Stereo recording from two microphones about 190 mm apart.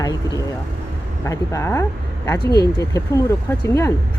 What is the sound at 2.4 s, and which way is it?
Speech, 55° left (ahead or behind).